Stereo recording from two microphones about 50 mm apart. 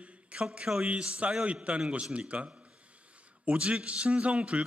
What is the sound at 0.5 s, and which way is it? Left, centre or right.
A man's voice, centre.